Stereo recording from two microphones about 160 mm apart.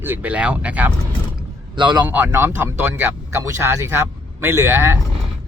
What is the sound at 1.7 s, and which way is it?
Speech, 30° right (ahead or behind).